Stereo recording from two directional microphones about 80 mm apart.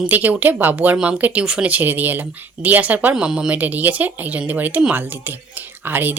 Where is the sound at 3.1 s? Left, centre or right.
Centre.